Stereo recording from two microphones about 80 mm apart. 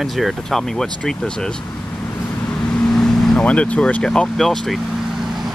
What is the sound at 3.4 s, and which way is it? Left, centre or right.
Speech, centre.